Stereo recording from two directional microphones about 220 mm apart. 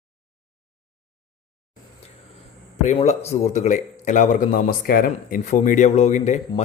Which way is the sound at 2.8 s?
30° left (ahead or behind).